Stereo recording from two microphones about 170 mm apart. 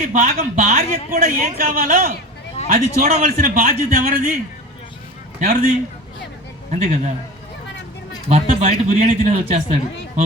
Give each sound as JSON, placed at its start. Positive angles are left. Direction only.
{"t": 0.1, "sound": "a man's voice", "side_deg": -45}
{"t": 5.4, "sound": "a man's voice", "side_deg": -55}
{"t": 8.3, "sound": "speech", "side_deg": -40}